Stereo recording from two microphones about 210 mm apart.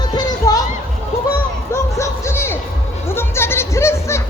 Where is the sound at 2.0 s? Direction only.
10° left (ahead or behind).